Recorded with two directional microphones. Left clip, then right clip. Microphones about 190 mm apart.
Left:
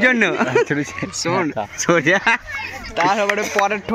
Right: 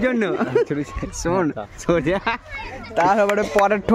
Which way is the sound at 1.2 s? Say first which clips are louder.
Left 1 dB; 45° right (ahead or behind).